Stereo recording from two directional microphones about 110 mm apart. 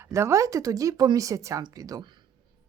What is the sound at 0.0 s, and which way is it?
A woman's voice, 25° right (ahead or behind).